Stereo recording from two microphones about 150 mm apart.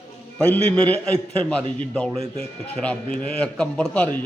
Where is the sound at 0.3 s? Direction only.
10° left (ahead or behind).